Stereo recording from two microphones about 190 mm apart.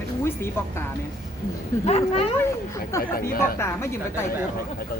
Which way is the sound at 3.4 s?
15° left (ahead or behind).